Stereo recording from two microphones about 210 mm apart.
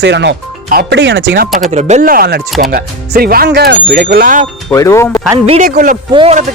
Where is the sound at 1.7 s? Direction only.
30° right (ahead or behind).